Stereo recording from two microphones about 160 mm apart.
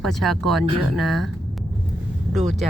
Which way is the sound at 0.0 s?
Centre (ahead or behind).